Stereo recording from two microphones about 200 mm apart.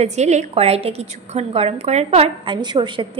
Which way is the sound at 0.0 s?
35° right (ahead or behind).